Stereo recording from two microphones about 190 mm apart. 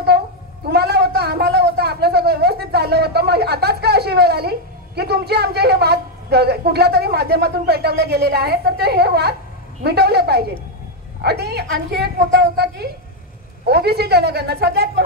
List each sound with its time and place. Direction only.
0.7 s a man's voice: 60° right (ahead or behind)